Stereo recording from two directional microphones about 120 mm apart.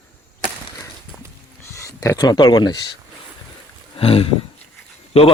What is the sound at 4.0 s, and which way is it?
Speech, 50° left (ahead or behind).